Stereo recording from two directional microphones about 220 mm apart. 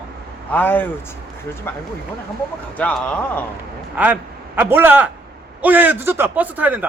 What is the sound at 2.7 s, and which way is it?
Speech, 5° left (ahead or behind).